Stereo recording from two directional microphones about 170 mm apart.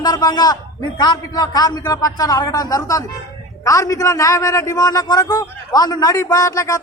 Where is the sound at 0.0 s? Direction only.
25° left (ahead or behind).